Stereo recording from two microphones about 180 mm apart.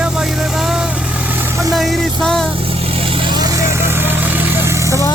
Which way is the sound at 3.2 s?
20° right (ahead or behind).